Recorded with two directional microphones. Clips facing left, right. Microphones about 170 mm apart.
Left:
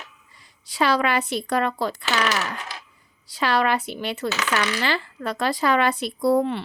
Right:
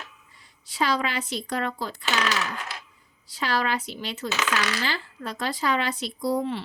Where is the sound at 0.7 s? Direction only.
70° left (ahead or behind).